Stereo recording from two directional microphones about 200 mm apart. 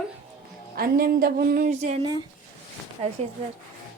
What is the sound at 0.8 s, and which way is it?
Speech, 50° right (ahead or behind).